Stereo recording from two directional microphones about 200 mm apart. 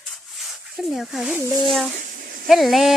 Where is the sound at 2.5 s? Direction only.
Centre (ahead or behind).